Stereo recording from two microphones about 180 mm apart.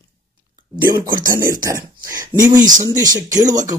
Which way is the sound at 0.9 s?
20° right (ahead or behind).